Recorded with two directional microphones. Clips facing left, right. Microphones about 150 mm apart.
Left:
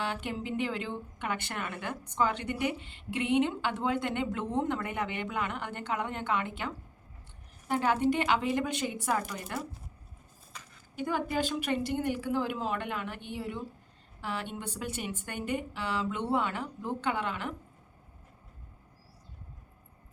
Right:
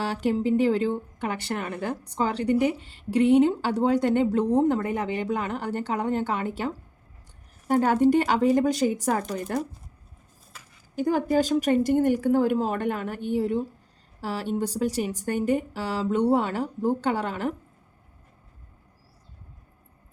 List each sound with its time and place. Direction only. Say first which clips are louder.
0.0 s speech: right 10 dB; 40° right (ahead or behind)
10.9 s a woman's voice: right 9 dB; 40° right (ahead or behind)